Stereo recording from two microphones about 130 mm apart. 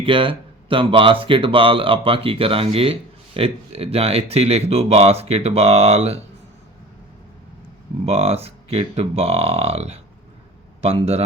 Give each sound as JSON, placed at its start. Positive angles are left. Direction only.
{"t": 0.0, "sound": "speech", "side_deg": -40}
{"t": 8.0, "sound": "a man's voice", "side_deg": -50}